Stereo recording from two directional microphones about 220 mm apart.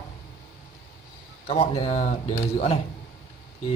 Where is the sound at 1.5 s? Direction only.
25° left (ahead or behind).